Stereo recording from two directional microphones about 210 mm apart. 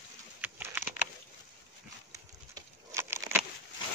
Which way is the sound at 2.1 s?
15° right (ahead or behind).